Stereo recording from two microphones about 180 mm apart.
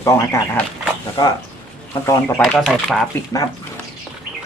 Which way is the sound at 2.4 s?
5° left (ahead or behind).